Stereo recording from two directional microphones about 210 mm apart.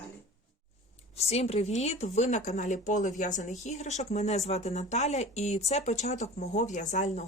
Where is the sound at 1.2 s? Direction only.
30° left (ahead or behind).